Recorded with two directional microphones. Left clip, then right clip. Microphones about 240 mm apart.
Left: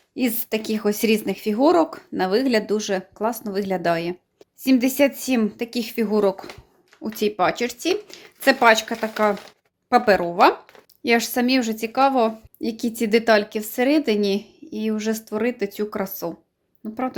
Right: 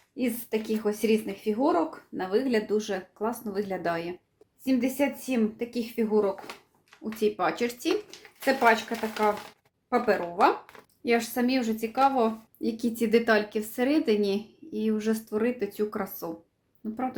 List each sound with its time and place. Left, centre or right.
0.2 s speech: left
4.6 s speech: left
8.4 s speech: left